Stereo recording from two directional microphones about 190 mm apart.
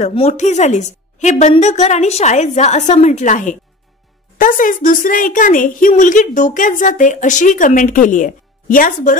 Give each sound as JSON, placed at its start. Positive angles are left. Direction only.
{"t": 0.0, "sound": "a woman's voice", "side_deg": 35}